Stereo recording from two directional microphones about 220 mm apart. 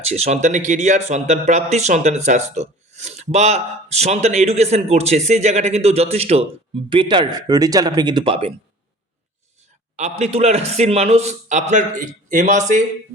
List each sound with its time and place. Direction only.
0.0 s speech: 30° right (ahead or behind)
9.9 s a man's voice: 30° right (ahead or behind)